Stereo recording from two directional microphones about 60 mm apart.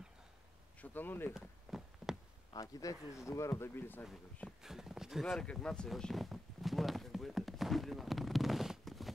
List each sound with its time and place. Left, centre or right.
0.7 s speech: left
1.3 s a sound: centre
2.5 s speech: left
3.3 s speech: left
4.5 s horse: centre
5.2 s speech: centre
5.9 s a sound: centre